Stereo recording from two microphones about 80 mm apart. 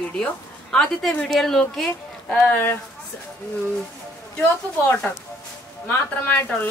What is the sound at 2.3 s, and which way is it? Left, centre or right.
Speech, left.